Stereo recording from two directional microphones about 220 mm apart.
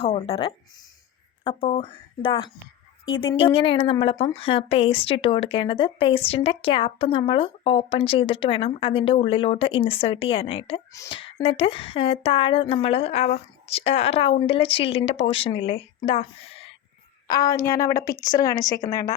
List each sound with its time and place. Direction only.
0.0 s speech: 25° left (ahead or behind)